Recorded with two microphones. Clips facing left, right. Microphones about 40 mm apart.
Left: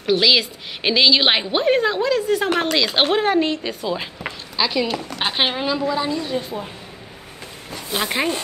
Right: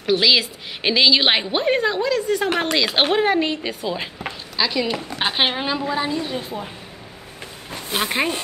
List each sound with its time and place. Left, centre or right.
0.0 s a woman's voice: centre
4.2 s a sound: centre
5.2 s a woman's voice: centre
5.6 s a woman's voice: centre
7.7 s a sound: centre
8.1 s a woman's voice: centre